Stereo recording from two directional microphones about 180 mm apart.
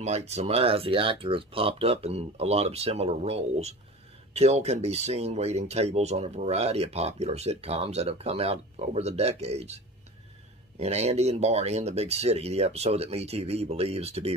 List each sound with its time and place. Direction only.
0.0 s speech: 40° right (ahead or behind)
10.8 s speech: 35° right (ahead or behind)